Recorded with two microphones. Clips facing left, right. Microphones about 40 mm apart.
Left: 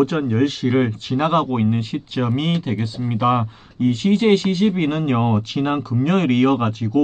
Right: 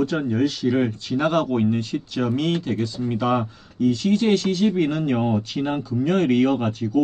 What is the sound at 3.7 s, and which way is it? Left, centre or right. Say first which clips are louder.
Speech: left 2 dB; left.